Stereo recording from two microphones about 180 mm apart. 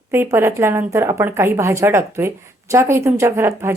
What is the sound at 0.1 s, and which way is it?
A woman's voice, 15° right (ahead or behind).